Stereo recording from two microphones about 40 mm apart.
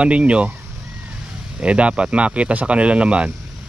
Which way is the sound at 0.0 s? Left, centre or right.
Right.